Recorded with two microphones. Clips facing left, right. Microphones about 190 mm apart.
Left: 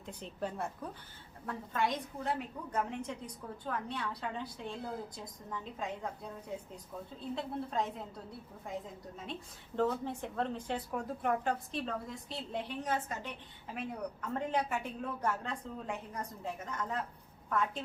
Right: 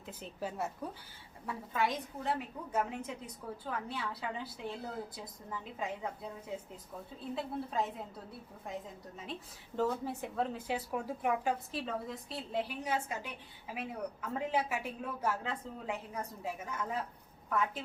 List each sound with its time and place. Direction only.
0.0 s a woman's voice: 5° right (ahead or behind)
7.3 s a woman's voice: centre (ahead or behind)